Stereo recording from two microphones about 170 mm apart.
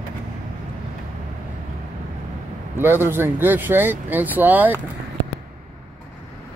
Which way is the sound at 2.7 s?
10° right (ahead or behind).